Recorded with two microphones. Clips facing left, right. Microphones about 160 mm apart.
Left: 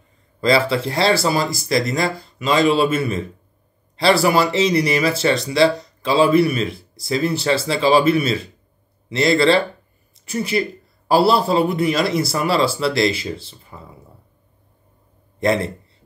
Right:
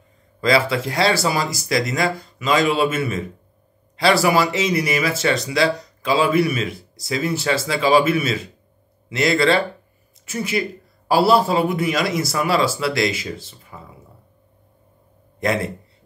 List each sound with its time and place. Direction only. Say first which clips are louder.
0.4 s a man's voice: left 1 dB; 30° left (ahead or behind)
15.4 s speech: left 3 dB; 30° left (ahead or behind)